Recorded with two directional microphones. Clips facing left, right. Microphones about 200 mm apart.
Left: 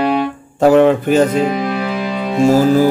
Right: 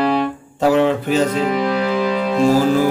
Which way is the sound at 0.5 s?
50° left (ahead or behind).